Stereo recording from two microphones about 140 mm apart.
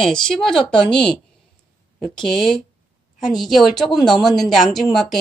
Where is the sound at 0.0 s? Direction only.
5° left (ahead or behind).